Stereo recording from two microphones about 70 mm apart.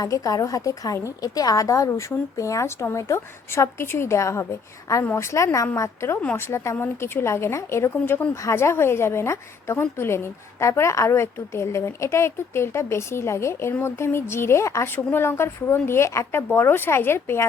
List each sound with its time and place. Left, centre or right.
0.0 s a woman's voice: left
14.9 s a woman's voice: left